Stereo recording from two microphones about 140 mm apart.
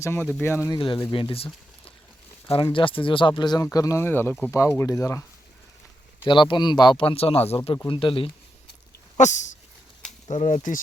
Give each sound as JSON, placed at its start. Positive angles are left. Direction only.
{"t": 0.0, "sound": "speech", "side_deg": 15}
{"t": 0.7, "sound": "speech", "side_deg": 35}
{"t": 2.5, "sound": "speech", "side_deg": 35}
{"t": 6.2, "sound": "speech", "side_deg": 35}
{"t": 9.1, "sound": "speech", "side_deg": 60}